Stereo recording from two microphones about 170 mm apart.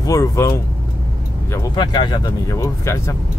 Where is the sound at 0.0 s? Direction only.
20° left (ahead or behind).